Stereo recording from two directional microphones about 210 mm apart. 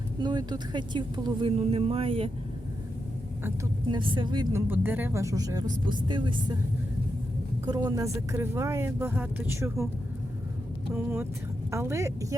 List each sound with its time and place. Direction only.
0.2 s speech: 20° right (ahead or behind)
3.9 s speech: 20° right (ahead or behind)
4.7 s speech: 10° right (ahead or behind)
7.6 s speech: 20° right (ahead or behind)
10.9 s speech: 10° right (ahead or behind)